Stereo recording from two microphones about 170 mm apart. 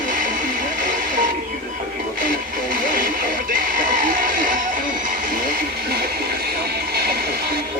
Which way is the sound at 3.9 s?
55° right (ahead or behind).